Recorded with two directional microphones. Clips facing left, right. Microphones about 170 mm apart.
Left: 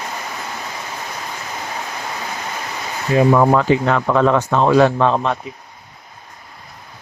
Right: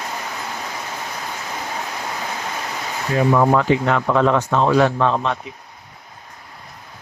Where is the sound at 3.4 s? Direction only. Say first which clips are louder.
Left 2 dB; 40° left (ahead or behind).